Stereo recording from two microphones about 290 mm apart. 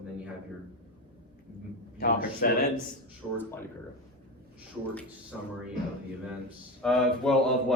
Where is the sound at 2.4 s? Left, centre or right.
Left.